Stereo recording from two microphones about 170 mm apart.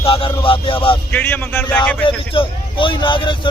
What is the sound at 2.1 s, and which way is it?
A man's voice, 30° left (ahead or behind).